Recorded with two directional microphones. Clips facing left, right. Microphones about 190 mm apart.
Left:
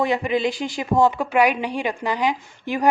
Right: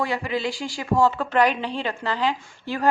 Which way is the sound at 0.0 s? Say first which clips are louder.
Left 5 dB; 20° left (ahead or behind).